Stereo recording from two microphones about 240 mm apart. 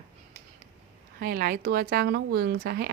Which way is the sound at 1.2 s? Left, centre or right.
Right.